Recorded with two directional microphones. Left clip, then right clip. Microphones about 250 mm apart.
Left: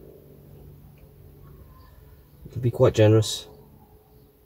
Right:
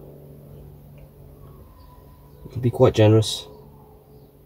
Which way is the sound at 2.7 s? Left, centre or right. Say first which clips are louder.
Right 2 dB; centre.